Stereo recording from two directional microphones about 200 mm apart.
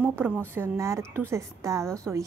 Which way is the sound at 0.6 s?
15° right (ahead or behind).